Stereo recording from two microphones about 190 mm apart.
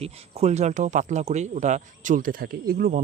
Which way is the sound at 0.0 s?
35° right (ahead or behind).